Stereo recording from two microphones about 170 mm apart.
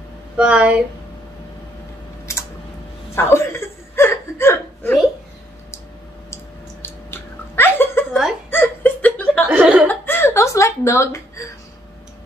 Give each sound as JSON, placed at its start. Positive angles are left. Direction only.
{"t": 0.4, "sound": "speech", "side_deg": -5}
{"t": 3.2, "sound": "chuckle", "side_deg": 15}
{"t": 6.3, "sound": "a sound", "side_deg": 15}
{"t": 8.5, "sound": "chuckle", "side_deg": 10}
{"t": 9.5, "sound": "chuckle", "side_deg": -10}
{"t": 9.8, "sound": "a sound", "side_deg": 15}